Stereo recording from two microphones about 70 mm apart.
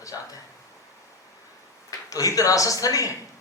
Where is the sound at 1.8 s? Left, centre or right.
Left.